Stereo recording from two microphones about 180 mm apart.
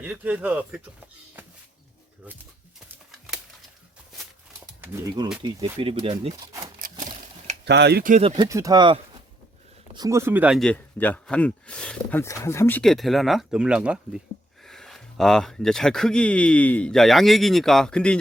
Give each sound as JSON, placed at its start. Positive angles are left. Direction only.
{"t": 0.0, "sound": "speech", "side_deg": -5}
{"t": 2.9, "sound": "a sound", "side_deg": 0}
{"t": 4.8, "sound": "speech", "side_deg": -20}
{"t": 7.6, "sound": "speech", "side_deg": -70}
{"t": 8.2, "sound": "speech", "side_deg": -30}
{"t": 8.4, "sound": "speech", "side_deg": -15}
{"t": 10.6, "sound": "speech", "side_deg": 5}
{"t": 12.2, "sound": "speech", "side_deg": 15}